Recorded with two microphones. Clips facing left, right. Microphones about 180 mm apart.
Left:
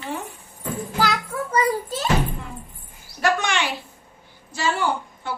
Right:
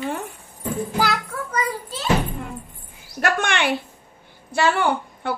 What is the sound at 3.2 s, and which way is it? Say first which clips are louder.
A child's voice: right 1 dB; 60° right (ahead or behind).